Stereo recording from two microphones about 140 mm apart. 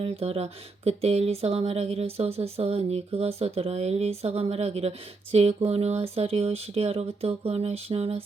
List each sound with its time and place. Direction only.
0.0 s speech: 45° right (ahead or behind)